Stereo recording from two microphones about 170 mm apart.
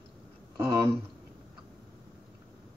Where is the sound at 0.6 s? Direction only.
20° right (ahead or behind).